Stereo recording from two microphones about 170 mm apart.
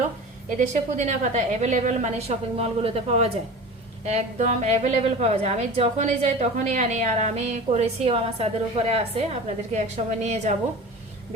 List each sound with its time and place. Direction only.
0.9 s a woman's voice: 40° right (ahead or behind)